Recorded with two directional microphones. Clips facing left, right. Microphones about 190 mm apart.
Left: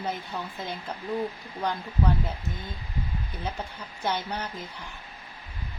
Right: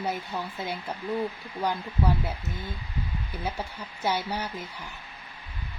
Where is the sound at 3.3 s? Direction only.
10° right (ahead or behind).